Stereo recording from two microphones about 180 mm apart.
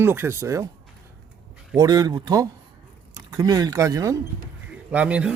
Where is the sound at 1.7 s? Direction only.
20° right (ahead or behind).